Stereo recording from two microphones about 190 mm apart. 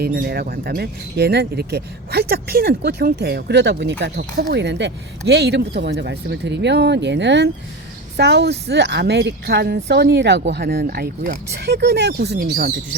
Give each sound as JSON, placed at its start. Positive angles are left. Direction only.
{"t": 0.0, "sound": "speech", "side_deg": -55}